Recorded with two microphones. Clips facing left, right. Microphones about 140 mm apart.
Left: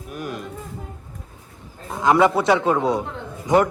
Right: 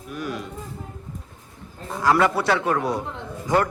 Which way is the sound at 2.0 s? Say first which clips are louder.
Left 3 dB; 20° left (ahead or behind).